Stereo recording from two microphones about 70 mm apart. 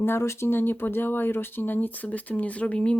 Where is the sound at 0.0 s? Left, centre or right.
Left.